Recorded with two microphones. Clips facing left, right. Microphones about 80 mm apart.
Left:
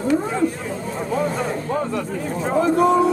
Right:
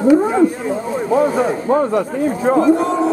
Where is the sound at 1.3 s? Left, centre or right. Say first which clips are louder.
Right 7 dB; centre.